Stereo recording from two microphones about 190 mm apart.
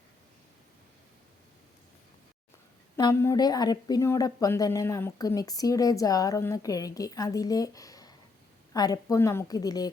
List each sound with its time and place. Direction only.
2.9 s a woman's voice: 15° left (ahead or behind)